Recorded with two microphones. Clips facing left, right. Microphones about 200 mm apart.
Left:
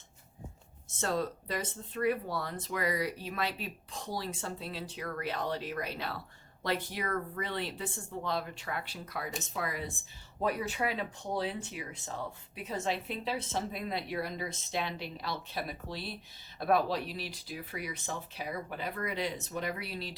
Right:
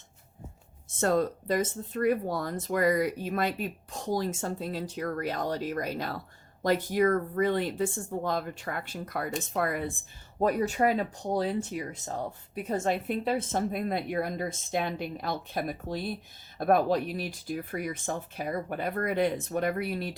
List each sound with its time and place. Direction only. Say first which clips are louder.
0.9 s speech: right 7 dB; 50° right (ahead or behind)
10.4 s speech: right 7 dB; 45° right (ahead or behind)